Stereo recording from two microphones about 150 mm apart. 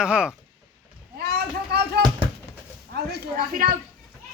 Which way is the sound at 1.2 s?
90° right.